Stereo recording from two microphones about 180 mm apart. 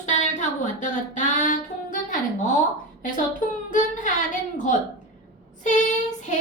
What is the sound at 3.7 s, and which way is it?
Speech, 45° left (ahead or behind).